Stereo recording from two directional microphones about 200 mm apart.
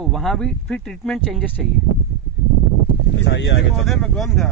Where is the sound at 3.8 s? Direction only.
Centre (ahead or behind).